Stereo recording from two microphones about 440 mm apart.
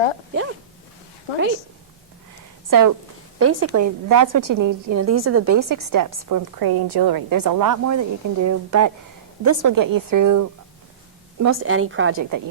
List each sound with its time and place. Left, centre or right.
2.6 s a woman's voice: right
3.3 s a woman's voice: right
11.4 s speech: right
12.1 s a woman's voice: right